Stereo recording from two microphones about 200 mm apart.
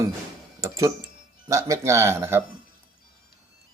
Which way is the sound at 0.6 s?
15° right (ahead or behind).